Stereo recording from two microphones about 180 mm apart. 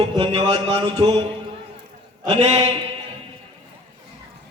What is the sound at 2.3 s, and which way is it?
Speech, 35° right (ahead or behind).